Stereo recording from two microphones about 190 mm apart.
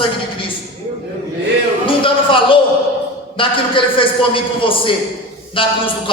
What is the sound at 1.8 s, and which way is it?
Speech, 25° left (ahead or behind).